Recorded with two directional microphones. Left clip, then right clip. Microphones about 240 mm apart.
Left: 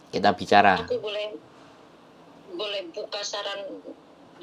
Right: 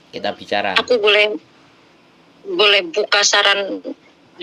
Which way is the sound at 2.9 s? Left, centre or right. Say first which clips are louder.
Right 17 dB; right.